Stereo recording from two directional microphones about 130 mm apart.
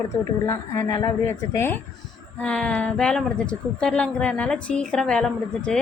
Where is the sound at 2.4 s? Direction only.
5° left (ahead or behind).